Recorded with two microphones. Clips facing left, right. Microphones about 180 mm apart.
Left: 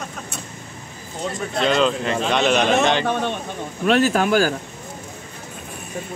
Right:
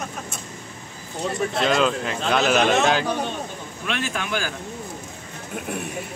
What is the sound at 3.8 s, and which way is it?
Speech, 40° left (ahead or behind).